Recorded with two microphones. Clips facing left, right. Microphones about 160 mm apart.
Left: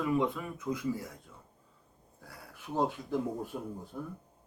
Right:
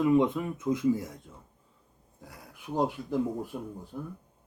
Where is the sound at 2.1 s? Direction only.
15° right (ahead or behind).